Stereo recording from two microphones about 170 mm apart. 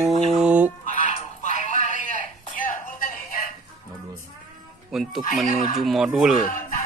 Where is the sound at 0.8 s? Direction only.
50° left (ahead or behind).